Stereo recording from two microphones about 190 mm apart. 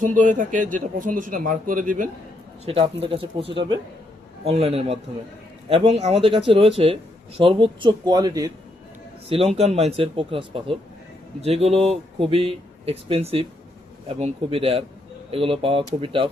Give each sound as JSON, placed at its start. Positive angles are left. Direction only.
{"t": 0.0, "sound": "a man's voice", "side_deg": -45}
{"t": 2.6, "sound": "speech", "side_deg": -30}
{"t": 9.6, "sound": "speech", "side_deg": -35}